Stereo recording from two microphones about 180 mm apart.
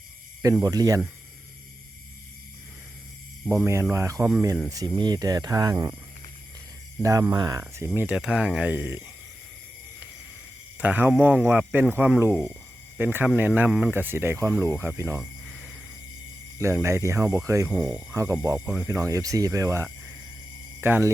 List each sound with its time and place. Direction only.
0.4 s speech: 20° right (ahead or behind)
3.9 s speech: 15° right (ahead or behind)
7.0 s speech: 15° right (ahead or behind)
10.8 s speech: 10° right (ahead or behind)
16.6 s speech: 15° right (ahead or behind)
17.7 s speech: 5° right (ahead or behind)
18.2 s speech: 15° right (ahead or behind)